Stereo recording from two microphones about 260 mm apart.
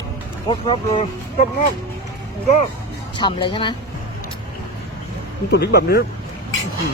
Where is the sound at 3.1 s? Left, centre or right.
Centre.